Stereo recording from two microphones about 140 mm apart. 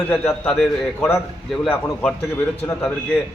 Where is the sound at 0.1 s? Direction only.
10° left (ahead or behind).